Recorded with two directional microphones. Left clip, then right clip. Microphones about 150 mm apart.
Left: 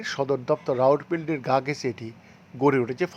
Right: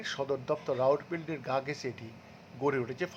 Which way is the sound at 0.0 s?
30° left (ahead or behind).